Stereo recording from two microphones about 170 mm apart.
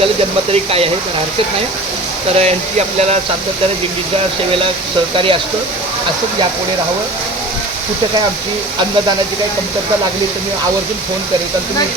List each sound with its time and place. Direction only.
2.4 s speech: 40° right (ahead or behind)
5.1 s speech: 30° right (ahead or behind)